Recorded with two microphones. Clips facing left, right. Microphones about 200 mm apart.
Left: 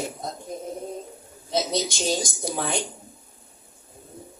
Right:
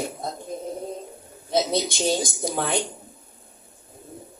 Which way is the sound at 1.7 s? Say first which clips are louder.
Right 2 dB; 55° right (ahead or behind).